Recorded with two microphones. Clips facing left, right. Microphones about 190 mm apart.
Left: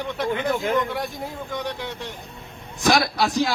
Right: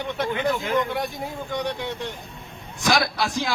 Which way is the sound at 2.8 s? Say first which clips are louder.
Left 3 dB; 50° left (ahead or behind).